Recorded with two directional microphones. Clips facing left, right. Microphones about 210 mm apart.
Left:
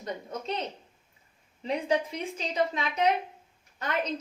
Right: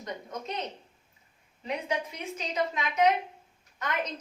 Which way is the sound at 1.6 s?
30° left (ahead or behind).